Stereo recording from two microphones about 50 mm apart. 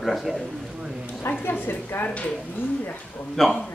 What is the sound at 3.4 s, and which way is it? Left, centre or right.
Speech, centre.